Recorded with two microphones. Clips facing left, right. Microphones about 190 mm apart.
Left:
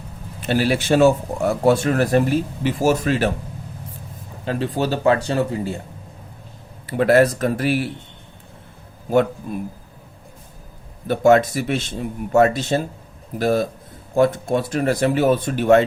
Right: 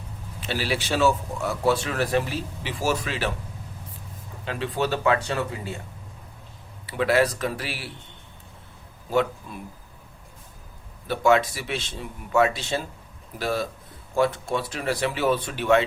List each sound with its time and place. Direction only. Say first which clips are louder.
0.3 s a man's voice: left 8 dB; 50° left (ahead or behind)
4.4 s speech: left 5 dB; 40° left (ahead or behind)
6.8 s a man's voice: left 7 dB; 50° left (ahead or behind)
9.0 s a man's voice: left 6 dB; 50° left (ahead or behind)
11.1 s a man's voice: left 6 dB; 45° left (ahead or behind)